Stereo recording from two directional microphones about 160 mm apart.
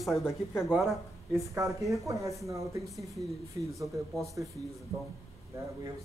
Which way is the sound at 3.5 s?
20° right (ahead or behind).